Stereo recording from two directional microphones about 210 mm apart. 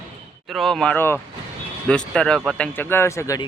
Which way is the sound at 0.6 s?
Centre (ahead or behind).